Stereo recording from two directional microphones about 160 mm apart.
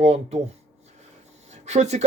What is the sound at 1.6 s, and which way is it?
Speech, 45° right (ahead or behind).